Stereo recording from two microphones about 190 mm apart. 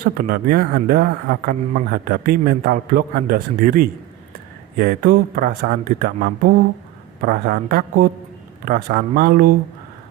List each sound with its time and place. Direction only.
0.0 s a man's voice: 50° right (ahead or behind)